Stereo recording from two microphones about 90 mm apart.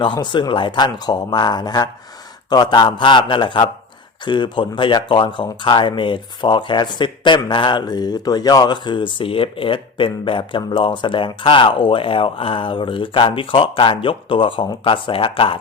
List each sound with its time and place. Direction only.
0.0 s a man's voice: 60° left (ahead or behind); by 15.5 s 85° left